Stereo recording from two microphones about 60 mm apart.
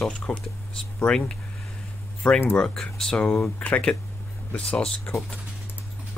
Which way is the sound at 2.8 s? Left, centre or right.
Centre.